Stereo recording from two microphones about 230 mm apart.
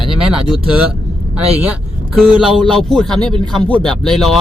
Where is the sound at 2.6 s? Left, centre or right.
Centre.